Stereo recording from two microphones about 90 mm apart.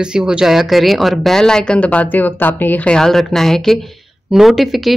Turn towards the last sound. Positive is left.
turn(degrees=0)  # may be behind; listen again after turning